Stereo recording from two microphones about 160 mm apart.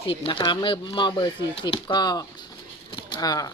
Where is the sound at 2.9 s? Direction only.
25° left (ahead or behind).